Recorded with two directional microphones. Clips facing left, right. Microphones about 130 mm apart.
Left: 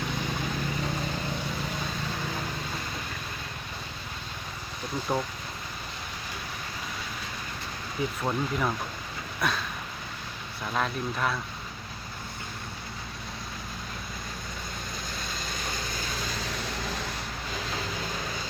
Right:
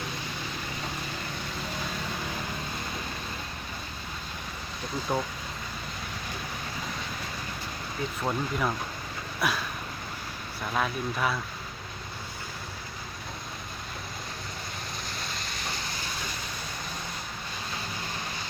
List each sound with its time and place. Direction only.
5.1 s speech: centre (ahead or behind)
8.2 s speech: centre (ahead or behind)
10.8 s speech: 5° right (ahead or behind)
15.5 s vehicle: 50° left (ahead or behind)